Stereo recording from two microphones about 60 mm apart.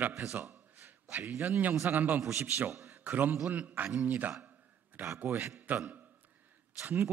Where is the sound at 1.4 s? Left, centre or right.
Right.